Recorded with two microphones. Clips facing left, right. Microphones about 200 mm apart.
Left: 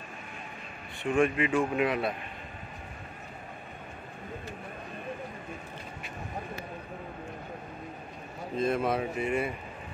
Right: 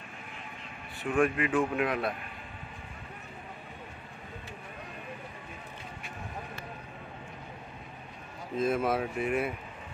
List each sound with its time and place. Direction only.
1.1 s speech: centre (ahead or behind)
8.5 s speech: 5° right (ahead or behind)